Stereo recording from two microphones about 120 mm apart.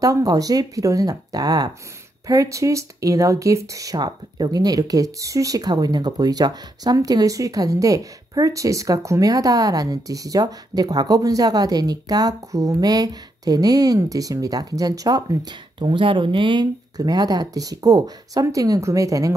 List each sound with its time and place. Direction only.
0.0 s speech: 30° right (ahead or behind)
15.8 s speech: 45° right (ahead or behind); by 19.3 s 30° right (ahead or behind)